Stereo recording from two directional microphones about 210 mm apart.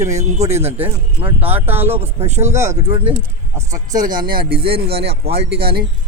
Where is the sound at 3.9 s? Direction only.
40° right (ahead or behind).